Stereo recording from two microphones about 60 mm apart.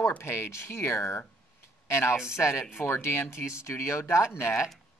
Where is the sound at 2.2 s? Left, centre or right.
Left.